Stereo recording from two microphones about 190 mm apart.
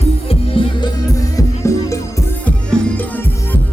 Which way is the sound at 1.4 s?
15° left (ahead or behind).